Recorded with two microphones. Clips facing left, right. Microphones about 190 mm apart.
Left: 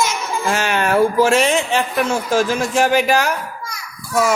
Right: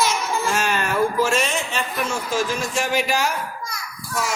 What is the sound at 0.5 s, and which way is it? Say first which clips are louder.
A man's voice: left 8 dB; 70° left (ahead or behind).